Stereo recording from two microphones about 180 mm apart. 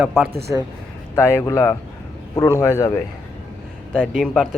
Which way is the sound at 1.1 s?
15° left (ahead or behind).